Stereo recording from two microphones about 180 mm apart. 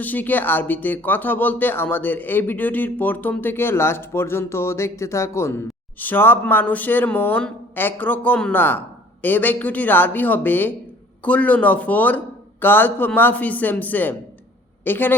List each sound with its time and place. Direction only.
0.0 s speech: 10° left (ahead or behind)